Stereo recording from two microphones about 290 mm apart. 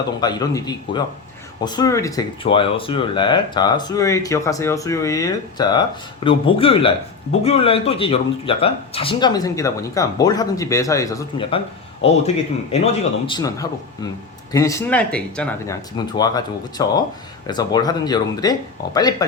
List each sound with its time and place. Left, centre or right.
0.2 s a man's voice: centre